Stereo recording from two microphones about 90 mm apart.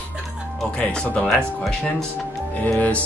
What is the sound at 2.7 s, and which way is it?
Speech, 15° left (ahead or behind).